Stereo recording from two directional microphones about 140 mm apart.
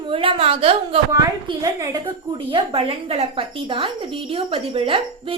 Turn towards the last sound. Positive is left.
turn(degrees=-40)  # may be behind; listen again after turning